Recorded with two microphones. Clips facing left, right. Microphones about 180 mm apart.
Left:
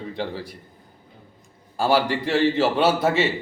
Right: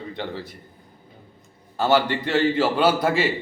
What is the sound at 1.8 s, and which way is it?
A man's voice, 30° left (ahead or behind).